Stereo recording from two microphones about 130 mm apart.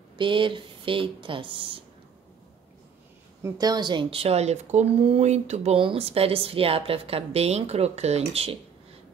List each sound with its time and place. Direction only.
0.2 s speech: 40° right (ahead or behind)
3.4 s speech: 30° right (ahead or behind); by 8.5 s 50° right (ahead or behind)